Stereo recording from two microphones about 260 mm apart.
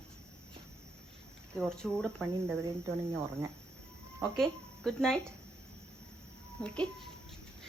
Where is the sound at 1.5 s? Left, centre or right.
Centre.